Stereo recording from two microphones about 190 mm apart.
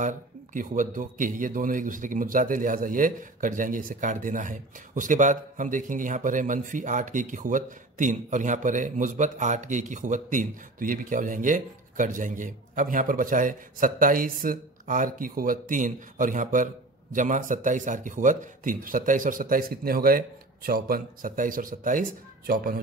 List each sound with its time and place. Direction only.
0.0 s speech: 45° right (ahead or behind)